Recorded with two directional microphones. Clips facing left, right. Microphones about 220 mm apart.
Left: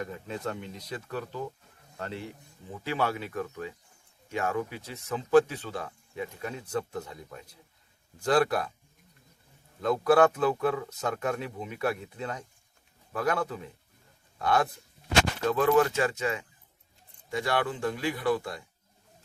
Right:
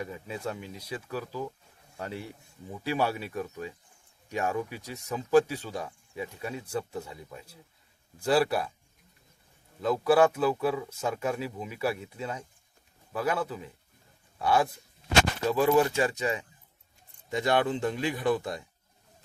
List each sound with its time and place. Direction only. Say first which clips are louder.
0.0 s speech: left 1 dB; 10° right (ahead or behind)
9.8 s speech: even; 5° right (ahead or behind); by 18.6 s 20° right (ahead or behind)